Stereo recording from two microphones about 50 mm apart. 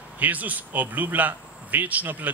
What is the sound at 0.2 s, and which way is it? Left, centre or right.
Speech, right.